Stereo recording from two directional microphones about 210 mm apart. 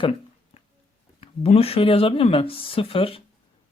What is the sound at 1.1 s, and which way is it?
Speech, 30° left (ahead or behind).